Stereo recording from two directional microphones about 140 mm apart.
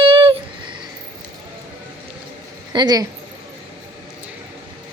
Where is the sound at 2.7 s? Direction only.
30° right (ahead or behind).